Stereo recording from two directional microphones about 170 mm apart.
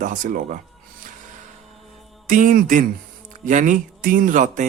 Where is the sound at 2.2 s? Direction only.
50° right (ahead or behind).